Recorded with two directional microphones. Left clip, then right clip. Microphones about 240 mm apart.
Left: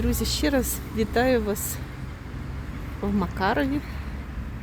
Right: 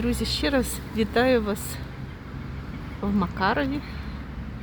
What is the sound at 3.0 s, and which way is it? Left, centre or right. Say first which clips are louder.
Speech: right 1 dB; centre.